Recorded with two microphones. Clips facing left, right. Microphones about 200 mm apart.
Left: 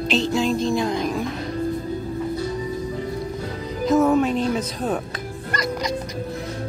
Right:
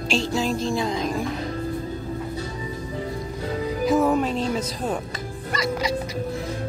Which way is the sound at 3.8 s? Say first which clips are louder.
Left 3 dB; 5° right (ahead or behind).